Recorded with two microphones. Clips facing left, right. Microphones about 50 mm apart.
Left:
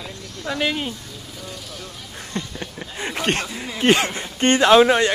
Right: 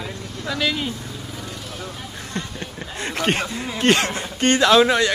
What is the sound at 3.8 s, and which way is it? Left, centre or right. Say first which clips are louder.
Speech: left 1 dB; centre.